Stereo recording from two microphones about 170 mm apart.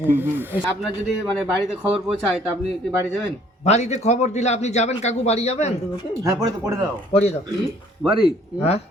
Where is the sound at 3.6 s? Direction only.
40° left (ahead or behind).